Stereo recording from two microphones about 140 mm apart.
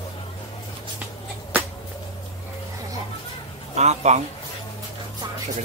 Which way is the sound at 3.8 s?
55° right (ahead or behind).